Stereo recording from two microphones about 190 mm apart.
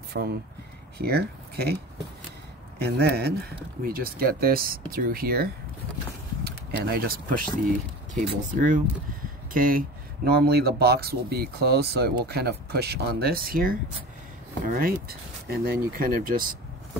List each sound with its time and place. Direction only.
0.2 s speech: 70° right (ahead or behind)
0.9 s speech: 55° right (ahead or behind)
2.8 s speech: 55° right (ahead or behind)
14.8 s speech: 50° right (ahead or behind)